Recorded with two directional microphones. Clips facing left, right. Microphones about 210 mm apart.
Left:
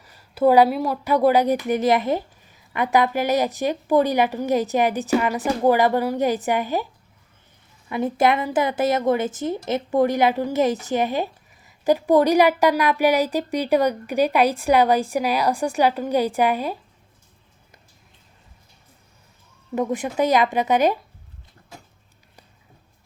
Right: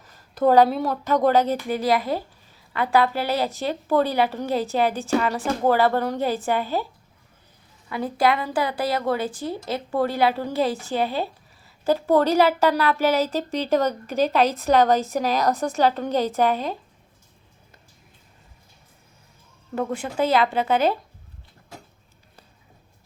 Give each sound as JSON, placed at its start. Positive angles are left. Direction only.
{"t": 0.0, "sound": "a woman's voice", "side_deg": 10}
{"t": 7.9, "sound": "a woman's voice", "side_deg": 20}
{"t": 19.7, "sound": "a woman's voice", "side_deg": 15}